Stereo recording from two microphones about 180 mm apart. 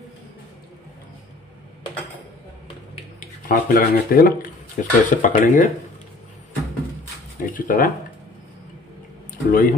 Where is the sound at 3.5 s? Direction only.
50° left (ahead or behind).